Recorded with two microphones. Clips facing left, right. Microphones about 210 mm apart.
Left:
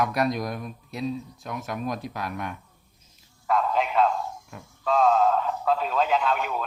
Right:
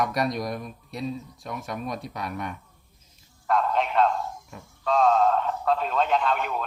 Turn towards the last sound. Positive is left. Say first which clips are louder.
# even
turn(degrees=0)  # may be behind; listen again after turning